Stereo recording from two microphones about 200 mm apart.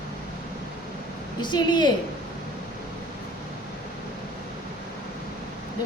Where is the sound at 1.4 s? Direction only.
20° left (ahead or behind).